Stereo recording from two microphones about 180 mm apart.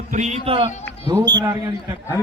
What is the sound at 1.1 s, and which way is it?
Speech, 20° right (ahead or behind).